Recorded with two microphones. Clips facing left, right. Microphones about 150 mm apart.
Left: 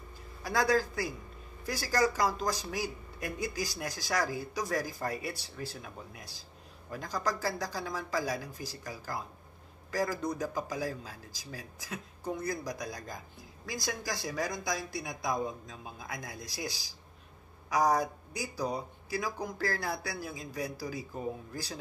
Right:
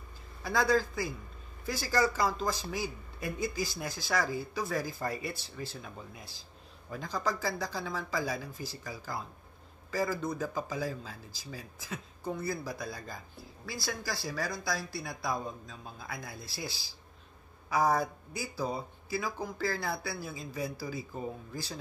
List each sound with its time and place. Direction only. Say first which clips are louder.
0.4 s speech: even; 10° left (ahead or behind)